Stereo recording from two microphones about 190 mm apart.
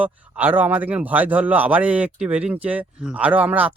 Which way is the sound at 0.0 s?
10° right (ahead or behind).